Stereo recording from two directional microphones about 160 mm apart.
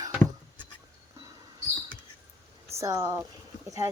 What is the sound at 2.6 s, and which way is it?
Speech, 20° right (ahead or behind).